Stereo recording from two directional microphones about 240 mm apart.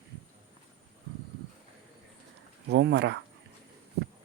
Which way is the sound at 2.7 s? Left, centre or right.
Right.